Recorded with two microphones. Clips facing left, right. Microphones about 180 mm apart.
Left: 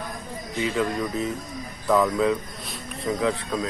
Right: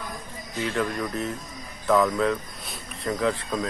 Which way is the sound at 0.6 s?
5° left (ahead or behind).